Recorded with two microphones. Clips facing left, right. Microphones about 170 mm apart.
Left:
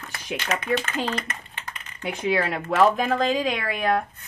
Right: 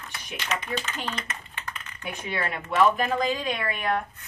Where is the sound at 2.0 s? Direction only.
90° left.